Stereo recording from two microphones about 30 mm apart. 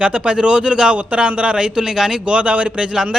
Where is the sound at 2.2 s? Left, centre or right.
Right.